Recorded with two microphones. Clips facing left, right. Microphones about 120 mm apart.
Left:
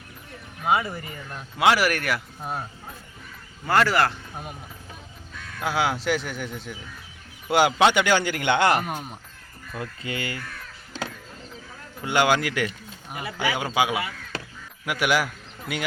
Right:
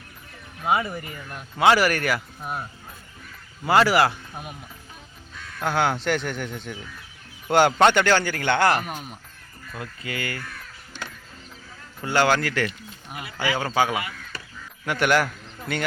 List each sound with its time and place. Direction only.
0.9 s speech: 25° left (ahead or behind)
1.5 s speech: 5° left (ahead or behind)
2.4 s speech: 30° left (ahead or behind)
3.7 s speech: 10° right (ahead or behind)
5.5 s speech: 5° left (ahead or behind); by 10.4 s 25° left (ahead or behind)
12.0 s a man's voice: 15° left (ahead or behind)